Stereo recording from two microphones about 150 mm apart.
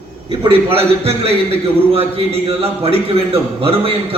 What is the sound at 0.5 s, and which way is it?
Speech, 40° right (ahead or behind).